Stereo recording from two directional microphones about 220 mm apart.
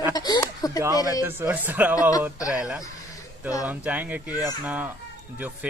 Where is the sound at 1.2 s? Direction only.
10° right (ahead or behind).